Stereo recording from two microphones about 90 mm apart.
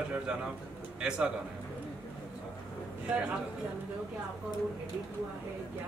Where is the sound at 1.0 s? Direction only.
10° right (ahead or behind).